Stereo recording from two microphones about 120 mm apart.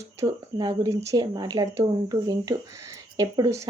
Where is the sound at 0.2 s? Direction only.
30° right (ahead or behind).